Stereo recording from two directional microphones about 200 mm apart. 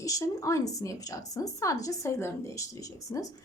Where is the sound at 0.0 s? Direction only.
15° left (ahead or behind).